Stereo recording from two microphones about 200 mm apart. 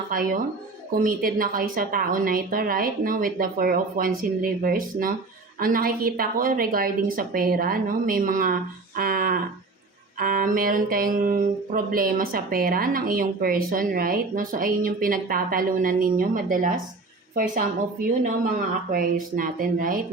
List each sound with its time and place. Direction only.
0.1 s speech: 45° right (ahead or behind)
18.9 s speech: 45° right (ahead or behind)